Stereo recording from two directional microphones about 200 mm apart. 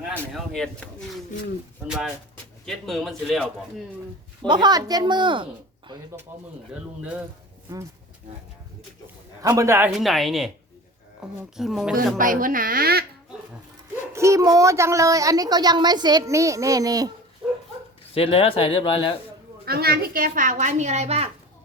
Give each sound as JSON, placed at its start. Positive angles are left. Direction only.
{"t": 0.1, "sound": "speech", "side_deg": 5}
{"t": 4.4, "sound": "a woman's voice", "side_deg": -20}
{"t": 6.3, "sound": "speech", "side_deg": -10}
{"t": 9.4, "sound": "speech", "side_deg": -15}
{"t": 12.1, "sound": "speech", "side_deg": -40}
{"t": 14.1, "sound": "speech", "side_deg": -15}
{"t": 18.1, "sound": "speech", "side_deg": 30}
{"t": 19.6, "sound": "a child's voice", "side_deg": -50}